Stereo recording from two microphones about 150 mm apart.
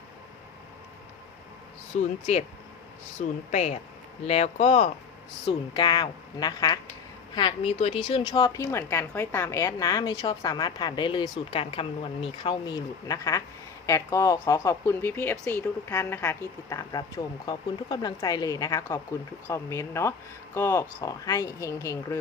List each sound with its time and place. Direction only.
1.9 s speech: 55° left (ahead or behind)
3.5 s speech: 45° left (ahead or behind)
5.5 s a woman's voice: 30° left (ahead or behind)
7.7 s a woman's voice: 40° left (ahead or behind); by 22.2 s 20° left (ahead or behind)